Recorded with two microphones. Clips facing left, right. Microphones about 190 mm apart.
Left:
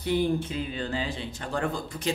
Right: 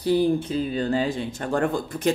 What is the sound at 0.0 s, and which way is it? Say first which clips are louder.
Speech: right 5 dB; 35° right (ahead or behind).